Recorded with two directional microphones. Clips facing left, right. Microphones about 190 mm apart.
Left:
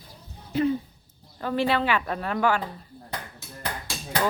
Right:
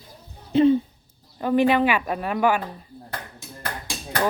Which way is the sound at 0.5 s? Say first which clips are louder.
Right 7 dB; 25° right (ahead or behind).